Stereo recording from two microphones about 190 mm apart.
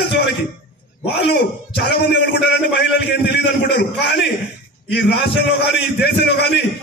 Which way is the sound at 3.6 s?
60° left (ahead or behind).